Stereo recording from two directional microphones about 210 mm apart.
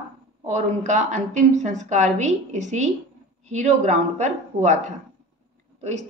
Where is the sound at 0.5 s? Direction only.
35° right (ahead or behind).